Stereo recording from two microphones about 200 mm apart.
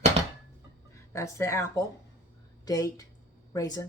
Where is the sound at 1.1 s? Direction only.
15° left (ahead or behind).